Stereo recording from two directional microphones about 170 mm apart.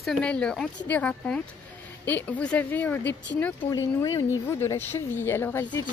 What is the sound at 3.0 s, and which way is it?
Speech, 90° left.